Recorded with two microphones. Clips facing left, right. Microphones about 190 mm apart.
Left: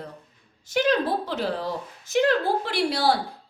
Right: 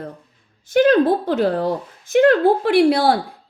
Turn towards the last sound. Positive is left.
turn(degrees=-55)  # may be behind; listen again after turning